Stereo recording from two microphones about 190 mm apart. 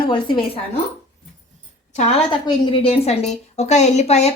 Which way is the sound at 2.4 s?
25° left (ahead or behind).